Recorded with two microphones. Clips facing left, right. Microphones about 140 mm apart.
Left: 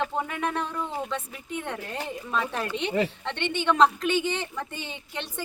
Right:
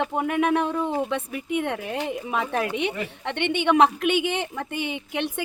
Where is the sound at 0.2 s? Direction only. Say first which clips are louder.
Right 7 dB; 65° right (ahead or behind).